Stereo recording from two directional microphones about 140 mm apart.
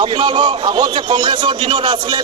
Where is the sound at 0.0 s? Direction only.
35° right (ahead or behind).